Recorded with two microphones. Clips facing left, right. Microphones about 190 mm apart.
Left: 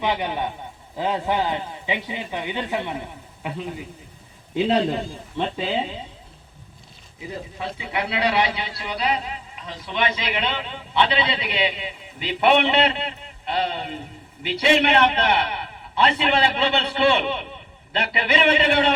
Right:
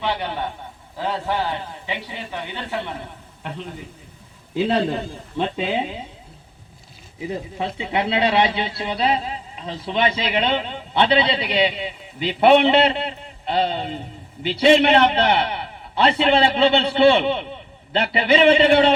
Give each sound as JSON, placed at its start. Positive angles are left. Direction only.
{"t": 0.0, "sound": "a man's voice", "side_deg": 15}
{"t": 7.2, "sound": "a man's voice", "side_deg": -25}